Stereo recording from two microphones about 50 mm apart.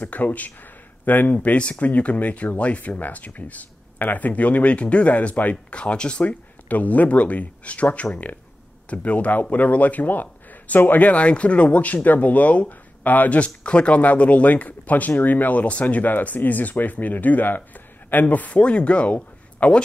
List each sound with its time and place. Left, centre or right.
0.0 s speech: left